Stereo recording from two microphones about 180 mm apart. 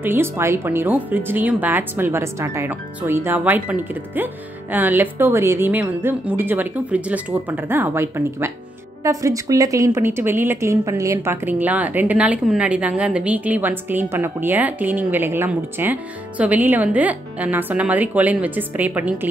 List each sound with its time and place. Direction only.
0.0 s a woman's voice: 10° right (ahead or behind)